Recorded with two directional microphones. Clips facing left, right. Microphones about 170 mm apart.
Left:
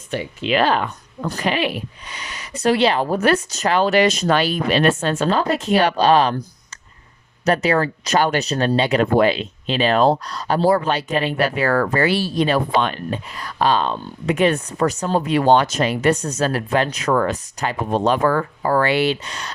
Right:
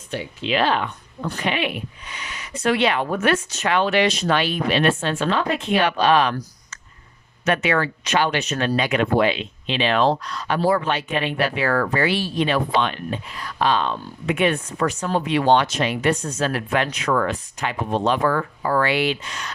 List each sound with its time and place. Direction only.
0.1 s speech: 50° left (ahead or behind); by 6.4 s 35° left (ahead or behind)
7.4 s speech: 35° left (ahead or behind)